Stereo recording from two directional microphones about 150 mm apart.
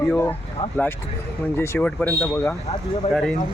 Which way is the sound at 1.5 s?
15° left (ahead or behind).